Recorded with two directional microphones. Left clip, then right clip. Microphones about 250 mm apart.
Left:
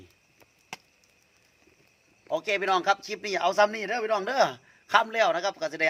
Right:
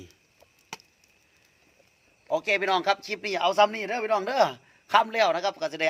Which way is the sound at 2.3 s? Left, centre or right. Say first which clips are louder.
Right 1 dB; centre.